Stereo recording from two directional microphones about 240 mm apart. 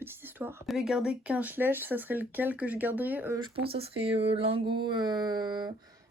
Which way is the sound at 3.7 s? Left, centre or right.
Right.